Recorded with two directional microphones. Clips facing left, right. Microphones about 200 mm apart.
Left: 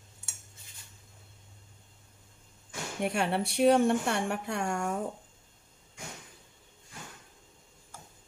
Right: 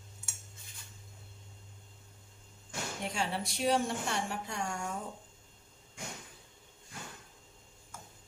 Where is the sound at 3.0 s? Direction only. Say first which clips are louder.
Left 7 dB; 60° left (ahead or behind).